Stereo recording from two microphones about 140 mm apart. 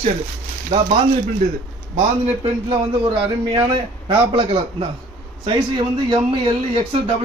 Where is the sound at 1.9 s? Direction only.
45° right (ahead or behind).